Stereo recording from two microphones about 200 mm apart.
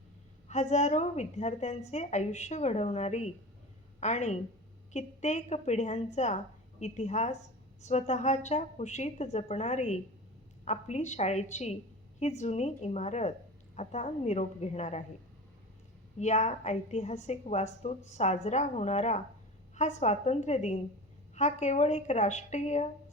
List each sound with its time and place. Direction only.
0.4 s a woman's voice: 35° left (ahead or behind)
16.1 s a woman's voice: 35° left (ahead or behind)